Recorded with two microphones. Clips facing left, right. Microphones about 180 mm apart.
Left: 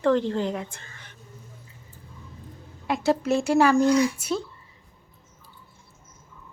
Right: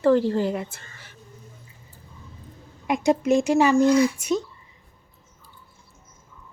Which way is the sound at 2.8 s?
15° right (ahead or behind).